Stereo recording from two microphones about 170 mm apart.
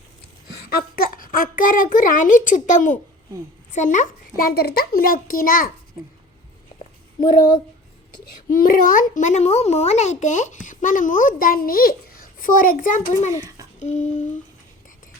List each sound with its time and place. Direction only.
0.7 s a woman's voice: 60° left (ahead or behind)
8.4 s a child's voice: 55° left (ahead or behind)
13.3 s a child's voice: 20° right (ahead or behind)
13.7 s a child's voice: 45° left (ahead or behind)